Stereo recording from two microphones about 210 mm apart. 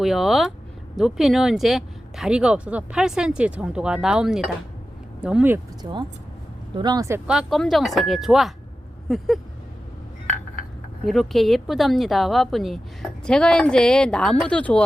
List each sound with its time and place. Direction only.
0.0 s speech: centre (ahead or behind)
5.8 s speech: 20° right (ahead or behind)
7.3 s speech: centre (ahead or behind)
11.0 s speech: centre (ahead or behind)